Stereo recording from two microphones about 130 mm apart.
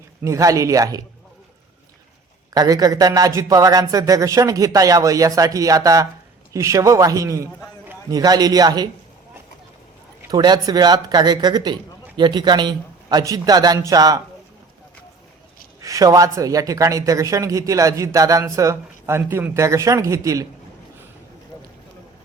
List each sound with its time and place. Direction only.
0.2 s a man's voice: 25° right (ahead or behind)
2.5 s a man's voice: 30° right (ahead or behind)
10.2 s a man's voice: 30° right (ahead or behind)
15.8 s a man's voice: 25° right (ahead or behind)